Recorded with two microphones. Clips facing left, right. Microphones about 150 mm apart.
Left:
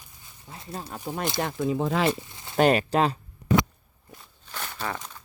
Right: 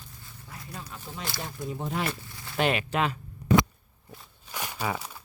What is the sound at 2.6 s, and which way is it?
Speech, 40° left (ahead or behind).